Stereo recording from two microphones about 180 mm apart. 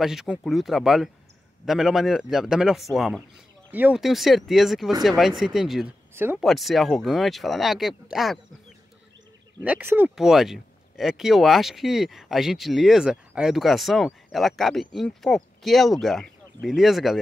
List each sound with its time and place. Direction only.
0.0 s speech: centre (ahead or behind)
6.4 s speech: centre (ahead or behind)